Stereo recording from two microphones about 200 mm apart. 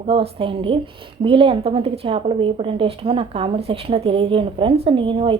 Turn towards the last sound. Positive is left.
turn(degrees=-25)  # may be behind; listen again after turning